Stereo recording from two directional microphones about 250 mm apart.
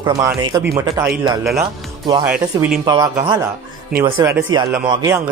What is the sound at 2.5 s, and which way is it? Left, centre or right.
Speech, centre.